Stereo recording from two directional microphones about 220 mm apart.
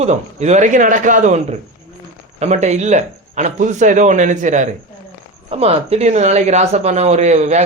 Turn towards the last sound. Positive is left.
turn(degrees=-30)  # may be behind; listen again after turning